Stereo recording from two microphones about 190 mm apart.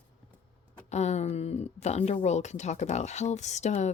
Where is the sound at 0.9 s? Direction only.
35° left (ahead or behind).